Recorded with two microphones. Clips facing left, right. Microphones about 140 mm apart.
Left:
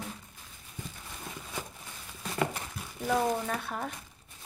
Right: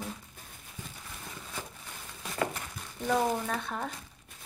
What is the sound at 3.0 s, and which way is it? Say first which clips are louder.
Speech: even; 5° left (ahead or behind).